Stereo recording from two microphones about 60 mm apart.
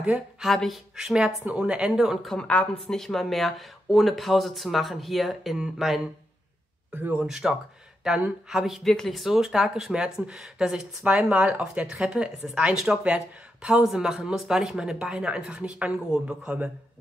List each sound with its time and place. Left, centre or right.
0.4 s speech: centre
2.4 s speech: left
2.7 s speech: centre
6.9 s speech: right
7.2 s speech: centre
11.1 s speech: right